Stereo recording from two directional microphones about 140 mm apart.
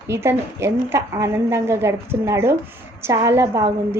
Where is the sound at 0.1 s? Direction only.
20° right (ahead or behind).